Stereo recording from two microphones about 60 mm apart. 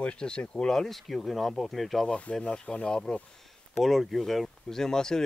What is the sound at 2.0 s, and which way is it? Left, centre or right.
Speech, left.